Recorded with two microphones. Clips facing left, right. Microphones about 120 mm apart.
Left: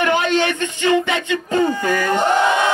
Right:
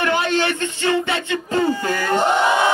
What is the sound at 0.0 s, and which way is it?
Speech, 20° left (ahead or behind).